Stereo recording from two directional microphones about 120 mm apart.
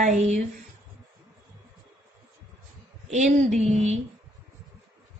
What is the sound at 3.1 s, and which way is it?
Speech, 70° right (ahead or behind).